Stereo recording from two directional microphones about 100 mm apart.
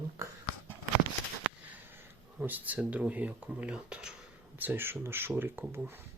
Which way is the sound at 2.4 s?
15° right (ahead or behind).